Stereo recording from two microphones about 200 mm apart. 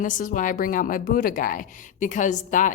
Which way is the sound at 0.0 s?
40° left (ahead or behind).